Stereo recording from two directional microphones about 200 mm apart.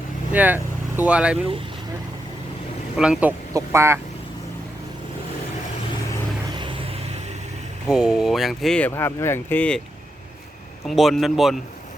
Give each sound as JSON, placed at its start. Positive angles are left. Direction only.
{"t": 0.3, "sound": "speech", "side_deg": -10}
{"t": 2.9, "sound": "speech", "side_deg": -5}
{"t": 6.6, "sound": "vehicle", "side_deg": -25}
{"t": 7.9, "sound": "speech", "side_deg": -5}
{"t": 10.8, "sound": "speech", "side_deg": 0}